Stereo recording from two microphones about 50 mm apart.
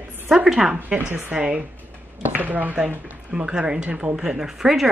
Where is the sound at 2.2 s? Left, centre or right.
Right; by 4.8 s centre.